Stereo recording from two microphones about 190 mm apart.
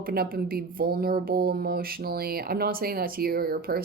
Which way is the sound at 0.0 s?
50° right (ahead or behind).